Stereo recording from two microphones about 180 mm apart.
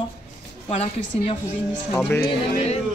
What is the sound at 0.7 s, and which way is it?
Speech, 35° left (ahead or behind).